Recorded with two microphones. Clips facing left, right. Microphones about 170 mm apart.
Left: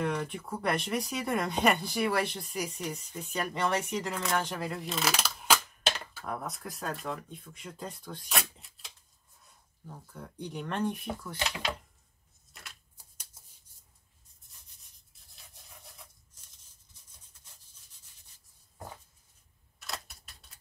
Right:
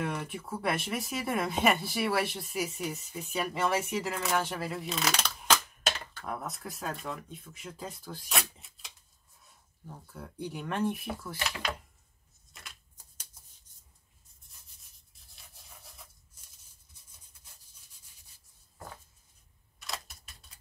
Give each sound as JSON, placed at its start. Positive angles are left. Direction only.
{"t": 0.0, "sound": "speech", "side_deg": -5}
{"t": 10.1, "sound": "speech", "side_deg": -10}
{"t": 11.3, "sound": "speech", "side_deg": 20}
{"t": 12.5, "sound": "shuffling cards", "side_deg": 0}
{"t": 15.5, "sound": "rub", "side_deg": 0}
{"t": 19.8, "sound": "camera", "side_deg": 0}